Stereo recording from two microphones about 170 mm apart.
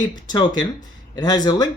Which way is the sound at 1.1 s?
25° left (ahead or behind).